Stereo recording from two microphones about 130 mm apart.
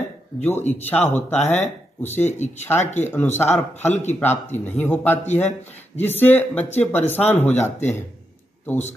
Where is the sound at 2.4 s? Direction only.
60° left (ahead or behind).